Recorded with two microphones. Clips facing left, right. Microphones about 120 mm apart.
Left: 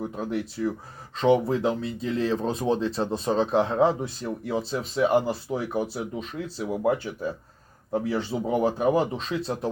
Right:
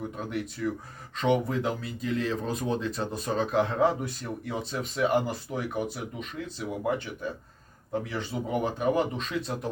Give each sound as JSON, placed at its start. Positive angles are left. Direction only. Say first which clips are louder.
{"t": 0.0, "sound": "speech", "louder": "left 4 dB", "side_deg": 30}